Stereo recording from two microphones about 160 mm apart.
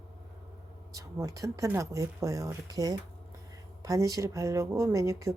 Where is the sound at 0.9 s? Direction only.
20° right (ahead or behind).